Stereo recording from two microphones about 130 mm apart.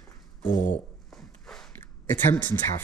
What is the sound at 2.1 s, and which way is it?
Speech, 15° left (ahead or behind).